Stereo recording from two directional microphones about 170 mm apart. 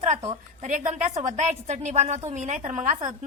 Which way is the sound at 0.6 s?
45° right (ahead or behind).